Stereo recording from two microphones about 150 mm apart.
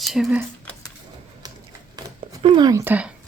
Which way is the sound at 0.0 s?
Centre (ahead or behind).